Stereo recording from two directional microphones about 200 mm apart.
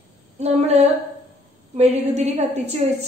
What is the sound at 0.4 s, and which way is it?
A woman's voice, 35° right (ahead or behind).